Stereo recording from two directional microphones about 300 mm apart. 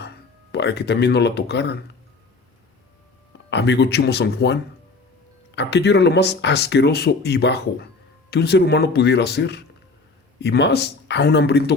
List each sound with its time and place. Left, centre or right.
0.5 s speech: left
3.5 s speech: left
5.5 s speech: left